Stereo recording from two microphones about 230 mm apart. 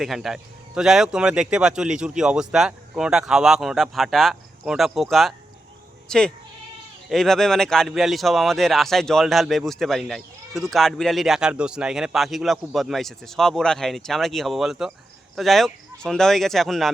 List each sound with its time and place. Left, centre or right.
0.0 s speech: centre